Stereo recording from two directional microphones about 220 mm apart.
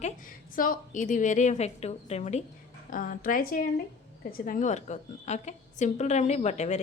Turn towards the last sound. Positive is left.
turn(degrees=30)  # may be behind; listen again after turning